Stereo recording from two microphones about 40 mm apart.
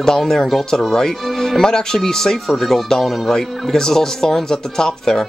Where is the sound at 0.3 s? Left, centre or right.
Centre.